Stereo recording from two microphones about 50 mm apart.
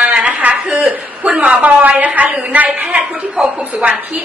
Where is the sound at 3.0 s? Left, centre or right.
Centre.